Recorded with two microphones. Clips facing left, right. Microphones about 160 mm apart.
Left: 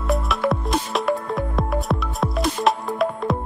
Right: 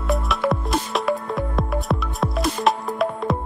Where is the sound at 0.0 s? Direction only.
Centre (ahead or behind).